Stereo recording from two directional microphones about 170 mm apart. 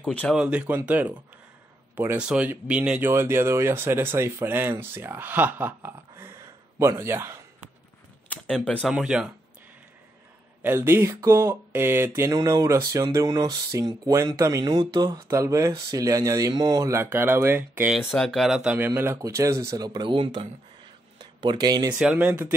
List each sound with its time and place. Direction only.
0.0 s speech: 10° left (ahead or behind)
0.3 s speech: 5° right (ahead or behind)
8.3 s camera: 5° left (ahead or behind)
8.8 s speech: 5° right (ahead or behind)
10.6 s speech: 10° right (ahead or behind)
18.9 s speech: 15° right (ahead or behind)
21.9 s speech: 5° right (ahead or behind)